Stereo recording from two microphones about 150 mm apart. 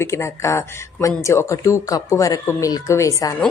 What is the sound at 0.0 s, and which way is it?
Speech, 20° left (ahead or behind).